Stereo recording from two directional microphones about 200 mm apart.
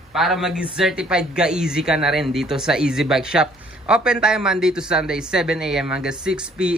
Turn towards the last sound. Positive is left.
turn(degrees=-5)  # may be behind; listen again after turning